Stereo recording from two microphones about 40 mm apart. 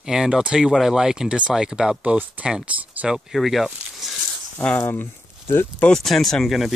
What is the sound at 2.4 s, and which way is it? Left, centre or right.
Speech, right.